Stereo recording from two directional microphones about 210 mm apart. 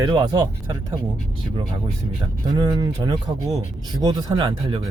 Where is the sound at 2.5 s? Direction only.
20° right (ahead or behind).